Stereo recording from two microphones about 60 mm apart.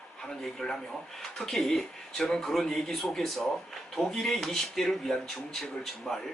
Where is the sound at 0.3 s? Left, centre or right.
Centre.